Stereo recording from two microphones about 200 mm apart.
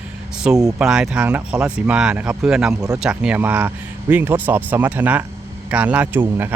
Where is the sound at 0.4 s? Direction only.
5° right (ahead or behind).